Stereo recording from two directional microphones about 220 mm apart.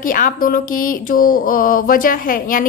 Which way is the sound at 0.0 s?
40° left (ahead or behind).